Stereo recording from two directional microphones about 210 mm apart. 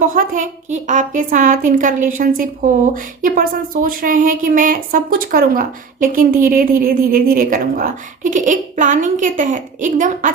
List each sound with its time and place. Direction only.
0.0 s speech: 40° right (ahead or behind)